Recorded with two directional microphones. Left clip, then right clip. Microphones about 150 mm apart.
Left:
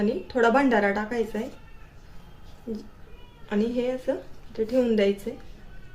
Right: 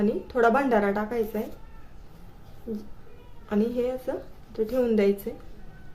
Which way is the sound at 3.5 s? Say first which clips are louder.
Even; 35° right (ahead or behind).